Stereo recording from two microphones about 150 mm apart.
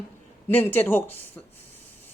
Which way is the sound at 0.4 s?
15° left (ahead or behind).